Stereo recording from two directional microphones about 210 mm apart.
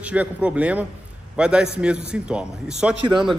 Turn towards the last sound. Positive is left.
turn(degrees=-20)  # may be behind; listen again after turning